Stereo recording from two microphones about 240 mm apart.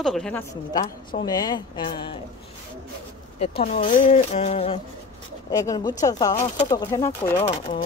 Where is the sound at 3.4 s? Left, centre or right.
Left.